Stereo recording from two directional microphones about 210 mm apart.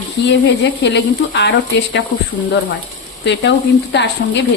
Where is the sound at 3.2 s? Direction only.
55° left (ahead or behind).